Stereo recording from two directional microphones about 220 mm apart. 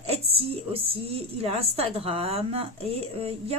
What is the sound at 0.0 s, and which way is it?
A woman's voice, 25° right (ahead or behind).